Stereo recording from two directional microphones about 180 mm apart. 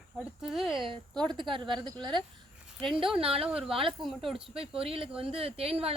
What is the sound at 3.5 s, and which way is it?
Speech, 5° right (ahead or behind).